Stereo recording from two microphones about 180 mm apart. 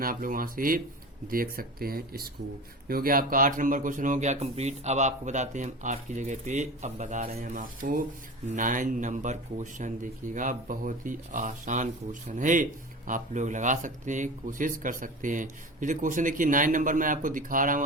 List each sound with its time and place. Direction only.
0.0 s a man's voice: 50° right (ahead or behind)